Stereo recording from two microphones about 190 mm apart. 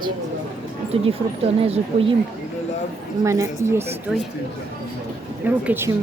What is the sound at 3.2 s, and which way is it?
Speech, 15° right (ahead or behind).